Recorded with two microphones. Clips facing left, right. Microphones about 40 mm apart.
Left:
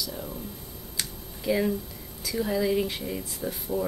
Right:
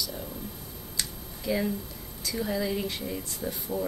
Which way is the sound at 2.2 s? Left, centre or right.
Centre.